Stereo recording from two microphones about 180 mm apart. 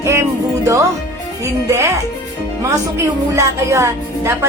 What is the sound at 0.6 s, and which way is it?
Speech, 15° right (ahead or behind).